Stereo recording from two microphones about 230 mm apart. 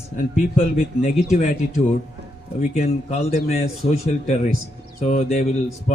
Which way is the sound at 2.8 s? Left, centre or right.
Left.